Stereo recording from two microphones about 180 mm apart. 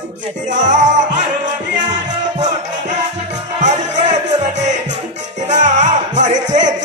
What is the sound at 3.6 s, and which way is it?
Music, 40° right (ahead or behind).